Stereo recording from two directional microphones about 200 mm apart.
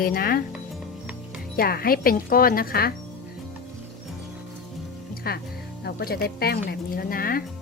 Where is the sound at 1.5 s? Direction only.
50° left (ahead or behind).